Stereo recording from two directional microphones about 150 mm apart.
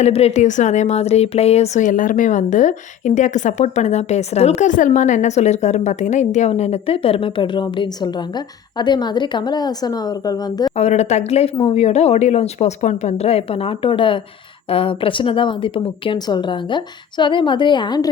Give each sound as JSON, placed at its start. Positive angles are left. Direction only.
{"t": 0.0, "sound": "speech", "side_deg": 45}
{"t": 10.8, "sound": "a woman's voice", "side_deg": 50}